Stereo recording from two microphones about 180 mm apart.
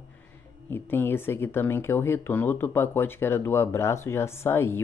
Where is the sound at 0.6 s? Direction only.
10° left (ahead or behind).